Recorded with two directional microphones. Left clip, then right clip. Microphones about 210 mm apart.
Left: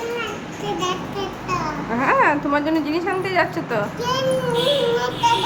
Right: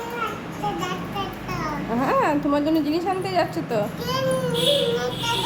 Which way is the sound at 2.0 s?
20° right (ahead or behind).